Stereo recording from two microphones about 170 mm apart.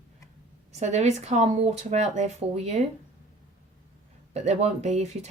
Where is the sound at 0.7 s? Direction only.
40° right (ahead or behind).